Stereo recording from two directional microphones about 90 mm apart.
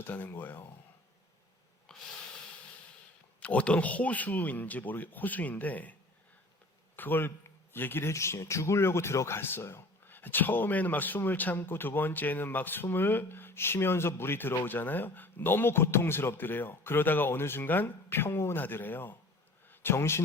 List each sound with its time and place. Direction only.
0.0 s speech: 20° left (ahead or behind)
1.9 s rub: 5° left (ahead or behind)
3.4 s speech: 15° left (ahead or behind)